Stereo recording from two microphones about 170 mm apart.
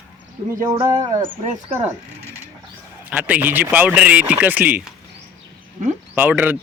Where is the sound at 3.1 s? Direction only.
10° right (ahead or behind).